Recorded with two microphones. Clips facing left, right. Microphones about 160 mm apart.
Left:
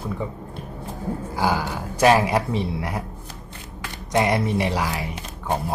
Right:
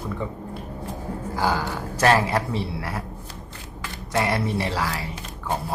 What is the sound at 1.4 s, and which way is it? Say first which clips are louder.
Speech: left 1 dB; 10° left (ahead or behind).